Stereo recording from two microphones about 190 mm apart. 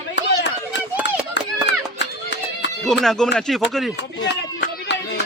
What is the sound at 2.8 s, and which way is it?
Speech, centre (ahead or behind).